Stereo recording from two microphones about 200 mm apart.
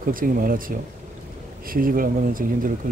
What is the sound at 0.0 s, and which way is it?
Speech, 45° right (ahead or behind).